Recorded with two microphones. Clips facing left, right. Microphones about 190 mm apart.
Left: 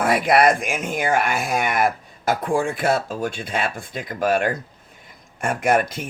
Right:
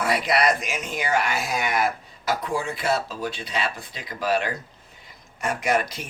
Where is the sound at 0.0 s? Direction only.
50° left (ahead or behind).